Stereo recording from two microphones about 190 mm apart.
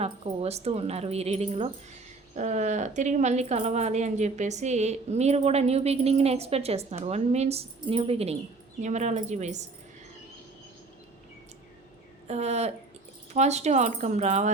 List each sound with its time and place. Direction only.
0.0 s speech: 35° right (ahead or behind)
12.3 s speech: 35° right (ahead or behind)